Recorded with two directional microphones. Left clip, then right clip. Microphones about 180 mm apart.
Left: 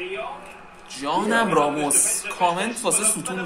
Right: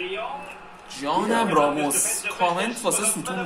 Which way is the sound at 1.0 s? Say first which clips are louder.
Left 1 dB; 15° left (ahead or behind).